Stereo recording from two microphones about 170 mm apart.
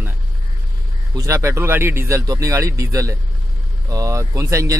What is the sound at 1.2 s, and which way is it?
Speech, 15° right (ahead or behind).